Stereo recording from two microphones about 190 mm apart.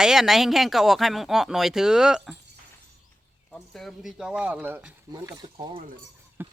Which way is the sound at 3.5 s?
Centre (ahead or behind).